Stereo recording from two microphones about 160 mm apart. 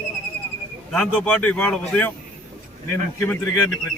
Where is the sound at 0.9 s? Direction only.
10° left (ahead or behind).